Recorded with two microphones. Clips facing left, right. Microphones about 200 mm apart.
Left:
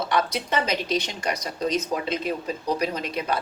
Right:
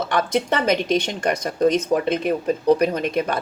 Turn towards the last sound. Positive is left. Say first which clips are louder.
# right 5 dB
turn(degrees=-50)  # may be behind; listen again after turning